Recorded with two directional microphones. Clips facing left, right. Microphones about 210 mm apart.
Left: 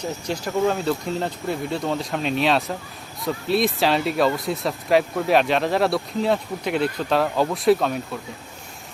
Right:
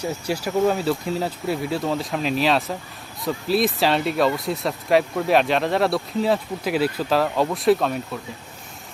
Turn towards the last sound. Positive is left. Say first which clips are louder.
# even
turn(degrees=0)  # may be behind; listen again after turning